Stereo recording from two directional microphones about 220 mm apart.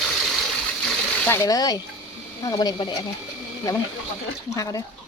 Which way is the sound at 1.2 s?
10° left (ahead or behind).